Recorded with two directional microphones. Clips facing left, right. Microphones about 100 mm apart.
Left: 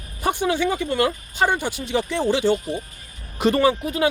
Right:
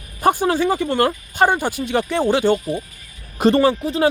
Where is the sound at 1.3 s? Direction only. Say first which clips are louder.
Right 5 dB; 45° right (ahead or behind).